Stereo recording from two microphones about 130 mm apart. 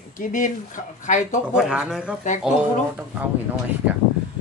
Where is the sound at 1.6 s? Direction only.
5° right (ahead or behind).